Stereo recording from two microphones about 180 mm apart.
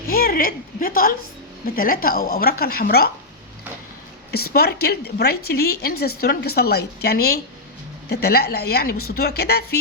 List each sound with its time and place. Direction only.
0.1 s a woman's voice: 55° left (ahead or behind)
4.3 s a woman's voice: 60° left (ahead or behind)